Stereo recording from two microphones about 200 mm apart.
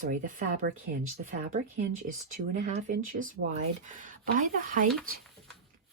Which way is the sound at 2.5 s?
35° right (ahead or behind).